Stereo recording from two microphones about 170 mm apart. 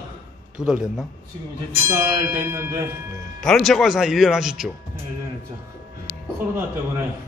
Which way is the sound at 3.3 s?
5° left (ahead or behind).